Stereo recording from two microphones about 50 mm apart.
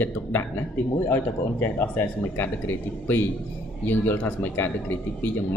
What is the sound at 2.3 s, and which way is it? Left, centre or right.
A man's voice, left.